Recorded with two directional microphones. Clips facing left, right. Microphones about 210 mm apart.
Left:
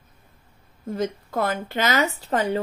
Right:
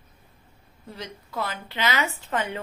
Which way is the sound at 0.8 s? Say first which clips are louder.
Left 12 dB; 50° left (ahead or behind).